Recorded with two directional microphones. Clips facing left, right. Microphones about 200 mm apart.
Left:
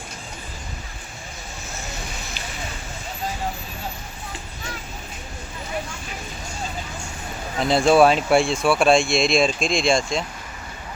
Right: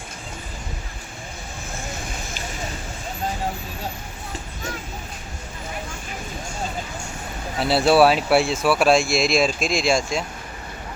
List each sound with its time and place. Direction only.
7.6 s speech: 5° right (ahead or behind)